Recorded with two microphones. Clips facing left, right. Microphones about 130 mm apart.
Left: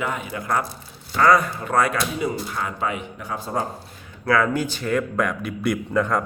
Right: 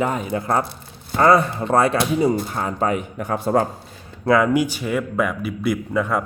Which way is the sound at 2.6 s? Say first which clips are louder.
Right 5 dB; 35° right (ahead or behind).